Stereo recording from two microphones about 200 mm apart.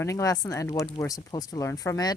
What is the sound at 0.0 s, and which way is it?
Speech, 15° left (ahead or behind).